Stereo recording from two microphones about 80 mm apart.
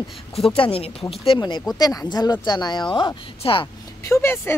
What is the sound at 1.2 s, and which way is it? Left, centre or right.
Speech, left.